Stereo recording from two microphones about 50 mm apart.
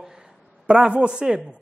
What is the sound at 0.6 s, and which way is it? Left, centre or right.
Speech, right.